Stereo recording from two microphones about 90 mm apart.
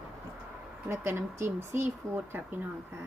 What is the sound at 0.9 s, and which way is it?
Speech, 25° right (ahead or behind).